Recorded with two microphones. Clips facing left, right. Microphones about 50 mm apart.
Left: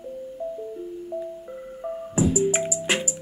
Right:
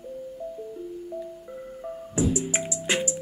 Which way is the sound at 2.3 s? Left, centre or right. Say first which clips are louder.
Left 6 dB; centre.